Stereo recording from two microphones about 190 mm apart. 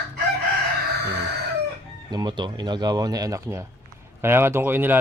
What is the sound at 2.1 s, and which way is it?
A man's voice, 25° right (ahead or behind).